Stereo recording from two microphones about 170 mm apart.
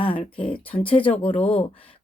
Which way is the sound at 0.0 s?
30° left (ahead or behind).